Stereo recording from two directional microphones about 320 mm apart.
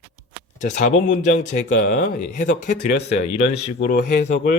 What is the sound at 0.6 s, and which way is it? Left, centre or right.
Speech, left.